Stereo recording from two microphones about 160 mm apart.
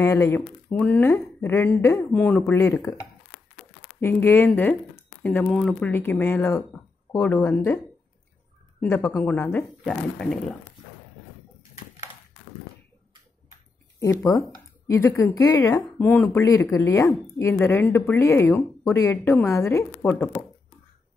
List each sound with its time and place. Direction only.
0.0 s speech: 15° left (ahead or behind)
4.0 s speech: 15° left (ahead or behind)
8.8 s speech: 15° left (ahead or behind)
14.2 s speech: 25° left (ahead or behind)